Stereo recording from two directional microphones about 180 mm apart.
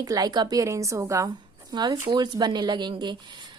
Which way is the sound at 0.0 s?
20° right (ahead or behind).